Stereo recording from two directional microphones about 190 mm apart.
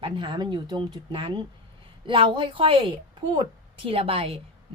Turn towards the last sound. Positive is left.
turn(degrees=-30)  # may be behind; listen again after turning